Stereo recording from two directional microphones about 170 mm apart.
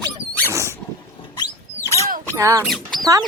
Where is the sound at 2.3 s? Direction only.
15° right (ahead or behind).